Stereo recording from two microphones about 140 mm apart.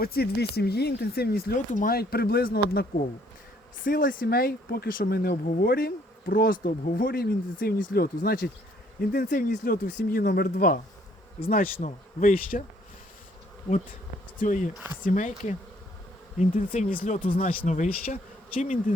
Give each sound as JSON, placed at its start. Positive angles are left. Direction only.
{"t": 0.0, "sound": "speech", "side_deg": 90}
{"t": 3.8, "sound": "speech", "side_deg": 85}
{"t": 13.7, "sound": "speech", "side_deg": 60}
{"t": 17.3, "sound": "speech", "side_deg": 90}
{"t": 17.7, "sound": "speech", "side_deg": 60}